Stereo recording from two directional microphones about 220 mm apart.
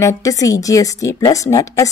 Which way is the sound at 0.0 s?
15° left (ahead or behind).